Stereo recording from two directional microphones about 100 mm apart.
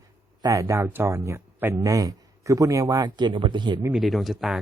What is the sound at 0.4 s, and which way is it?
Speech, 30° right (ahead or behind).